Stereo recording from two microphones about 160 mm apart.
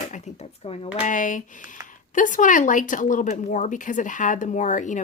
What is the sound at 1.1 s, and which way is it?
Speech, 55° left (ahead or behind).